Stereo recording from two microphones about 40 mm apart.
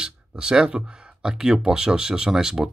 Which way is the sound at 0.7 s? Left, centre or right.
Centre.